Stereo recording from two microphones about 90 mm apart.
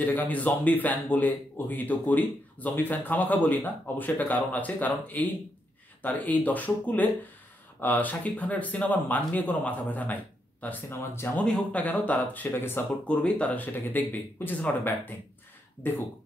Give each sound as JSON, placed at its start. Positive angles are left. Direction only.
{"t": 0.0, "sound": "speech", "side_deg": 15}
{"t": 10.9, "sound": "speech", "side_deg": 30}
{"t": 11.3, "sound": "speech", "side_deg": 10}
{"t": 13.0, "sound": "speech", "side_deg": 10}